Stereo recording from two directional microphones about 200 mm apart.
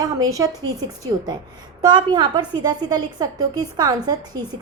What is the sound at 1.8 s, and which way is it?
A woman's voice, 20° right (ahead or behind).